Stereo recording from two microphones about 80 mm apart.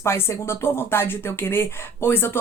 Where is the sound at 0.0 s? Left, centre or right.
Left.